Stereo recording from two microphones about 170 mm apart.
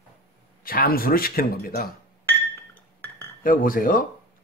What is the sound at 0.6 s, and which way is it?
A man's voice, 60° left (ahead or behind).